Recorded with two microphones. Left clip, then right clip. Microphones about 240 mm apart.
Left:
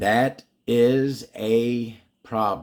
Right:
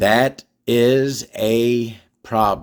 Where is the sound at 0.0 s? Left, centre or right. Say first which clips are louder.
Right 5 dB; right.